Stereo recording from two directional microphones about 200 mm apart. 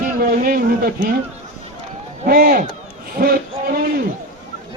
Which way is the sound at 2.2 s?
45° right (ahead or behind).